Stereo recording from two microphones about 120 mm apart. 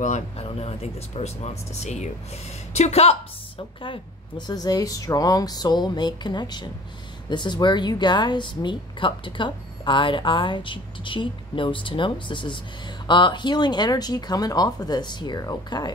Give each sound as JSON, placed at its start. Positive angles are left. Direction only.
{"t": 0.0, "sound": "speech", "side_deg": 65}
{"t": 2.7, "sound": "a woman's voice", "side_deg": 60}